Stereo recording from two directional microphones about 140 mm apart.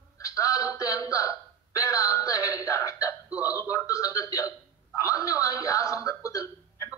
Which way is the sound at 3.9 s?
25° left (ahead or behind).